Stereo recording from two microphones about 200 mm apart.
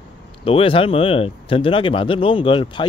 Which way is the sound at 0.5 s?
25° left (ahead or behind).